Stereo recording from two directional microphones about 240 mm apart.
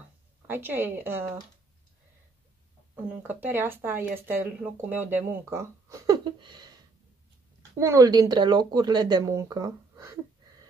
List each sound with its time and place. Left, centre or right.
0.5 s speech: centre
3.2 s speech: centre
7.8 s speech: centre